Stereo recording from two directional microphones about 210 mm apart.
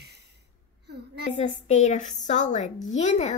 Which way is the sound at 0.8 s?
50° right (ahead or behind).